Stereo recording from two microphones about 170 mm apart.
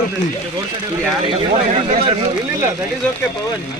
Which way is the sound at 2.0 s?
35° right (ahead or behind).